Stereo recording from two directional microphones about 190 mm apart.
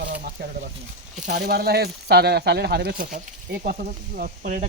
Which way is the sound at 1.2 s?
45° right (ahead or behind).